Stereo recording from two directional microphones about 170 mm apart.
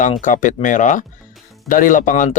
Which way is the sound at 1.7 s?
50° left (ahead or behind).